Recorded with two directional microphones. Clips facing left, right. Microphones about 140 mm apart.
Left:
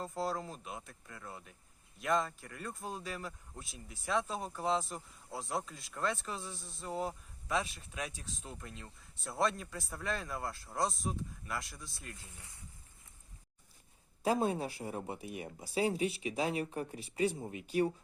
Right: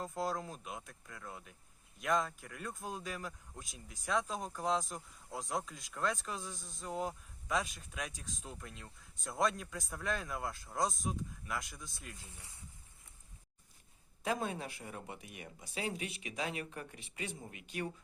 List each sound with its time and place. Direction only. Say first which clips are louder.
0.0 s speech: left 1 dB; centre (ahead or behind)
14.3 s speech: left 5 dB; 30° left (ahead or behind)